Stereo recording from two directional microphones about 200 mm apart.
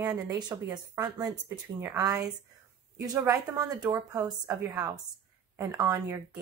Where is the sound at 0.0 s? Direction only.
15° right (ahead or behind).